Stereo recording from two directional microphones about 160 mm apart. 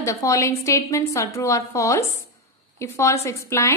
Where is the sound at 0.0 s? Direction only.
20° left (ahead or behind).